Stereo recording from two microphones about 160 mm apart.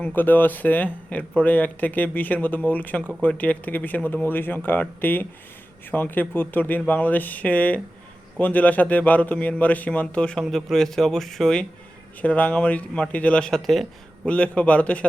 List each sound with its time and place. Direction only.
0.0 s speech: 10° left (ahead or behind)